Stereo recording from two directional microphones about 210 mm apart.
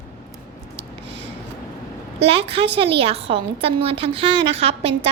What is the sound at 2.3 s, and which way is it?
A woman's voice, 25° right (ahead or behind).